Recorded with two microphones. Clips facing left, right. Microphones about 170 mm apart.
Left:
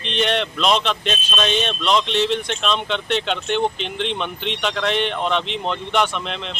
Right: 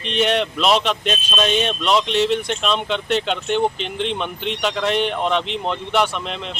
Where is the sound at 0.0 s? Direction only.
5° right (ahead or behind).